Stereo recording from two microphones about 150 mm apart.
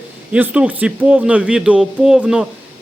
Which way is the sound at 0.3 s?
10° right (ahead or behind).